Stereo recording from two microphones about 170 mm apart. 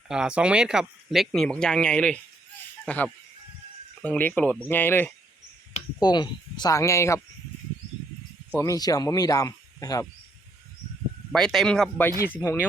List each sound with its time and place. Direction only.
0.1 s speech: 5° right (ahead or behind); by 5.1 s 10° left (ahead or behind)
6.0 s speech: 25° left (ahead or behind)
8.5 s speech: 20° left (ahead or behind)
11.3 s speech: centre (ahead or behind)